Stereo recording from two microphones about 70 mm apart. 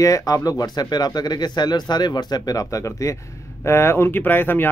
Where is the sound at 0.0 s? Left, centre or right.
Left.